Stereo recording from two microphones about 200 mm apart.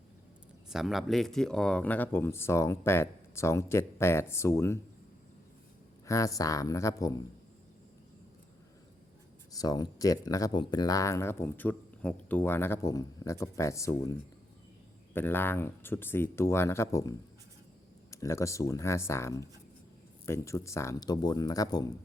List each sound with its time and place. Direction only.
0.7 s speech: centre (ahead or behind); by 4.8 s 15° left (ahead or behind)
6.1 s speech: 15° left (ahead or behind)
9.5 s speech: 20° left (ahead or behind)